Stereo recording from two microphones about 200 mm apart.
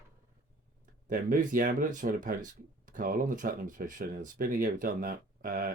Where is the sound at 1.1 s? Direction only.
45° right (ahead or behind).